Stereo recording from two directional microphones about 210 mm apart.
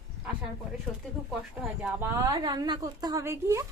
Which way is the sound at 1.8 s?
10° right (ahead or behind).